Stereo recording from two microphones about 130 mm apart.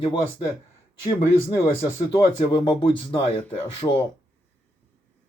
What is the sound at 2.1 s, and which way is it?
Speech, 40° left (ahead or behind).